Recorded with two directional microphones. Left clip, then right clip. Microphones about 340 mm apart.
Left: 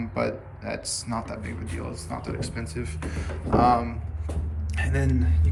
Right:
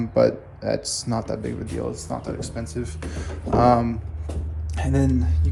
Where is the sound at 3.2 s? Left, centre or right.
Right.